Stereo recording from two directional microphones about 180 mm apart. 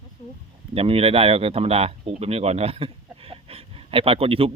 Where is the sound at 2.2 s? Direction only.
35° right (ahead or behind).